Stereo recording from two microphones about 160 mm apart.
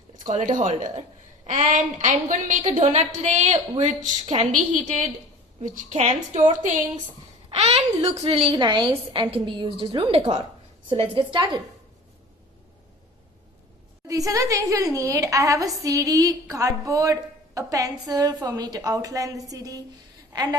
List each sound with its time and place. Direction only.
0.2 s a woman's voice: 50° right (ahead or behind)
7.5 s a sound: 40° right (ahead or behind)
8.0 s a woman's voice: 35° right (ahead or behind)
14.1 s a woman's voice: 20° right (ahead or behind)